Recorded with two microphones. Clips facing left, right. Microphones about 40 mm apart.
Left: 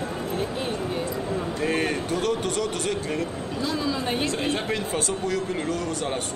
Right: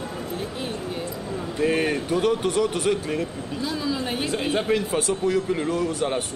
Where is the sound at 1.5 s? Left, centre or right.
Centre.